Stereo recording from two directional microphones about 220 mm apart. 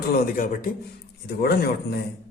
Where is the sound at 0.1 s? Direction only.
40° left (ahead or behind).